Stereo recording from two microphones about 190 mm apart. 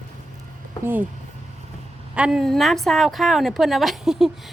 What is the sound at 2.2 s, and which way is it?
A woman's voice, 5° right (ahead or behind).